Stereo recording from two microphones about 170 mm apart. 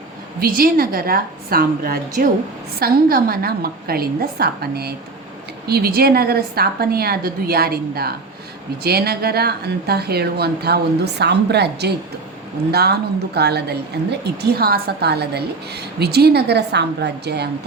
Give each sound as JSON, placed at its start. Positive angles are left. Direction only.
{"t": 0.3, "sound": "a woman's voice", "side_deg": -60}